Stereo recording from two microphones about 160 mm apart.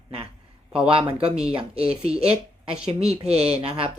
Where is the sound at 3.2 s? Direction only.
40° right (ahead or behind).